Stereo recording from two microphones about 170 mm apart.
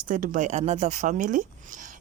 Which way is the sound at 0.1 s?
50° right (ahead or behind).